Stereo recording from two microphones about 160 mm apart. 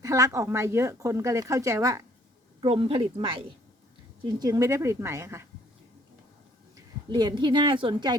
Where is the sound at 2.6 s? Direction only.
35° right (ahead or behind).